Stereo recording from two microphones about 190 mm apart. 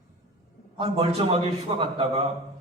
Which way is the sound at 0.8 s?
30° right (ahead or behind).